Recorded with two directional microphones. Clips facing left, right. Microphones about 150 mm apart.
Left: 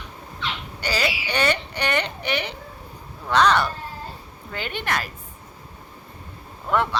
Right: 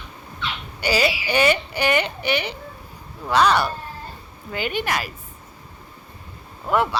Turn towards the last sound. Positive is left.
turn(degrees=-5)  # may be behind; listen again after turning